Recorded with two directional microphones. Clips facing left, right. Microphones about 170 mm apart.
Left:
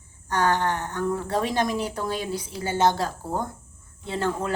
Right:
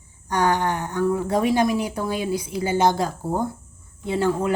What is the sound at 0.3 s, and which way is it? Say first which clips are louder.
A woman's voice: right 2 dB; 15° right (ahead or behind).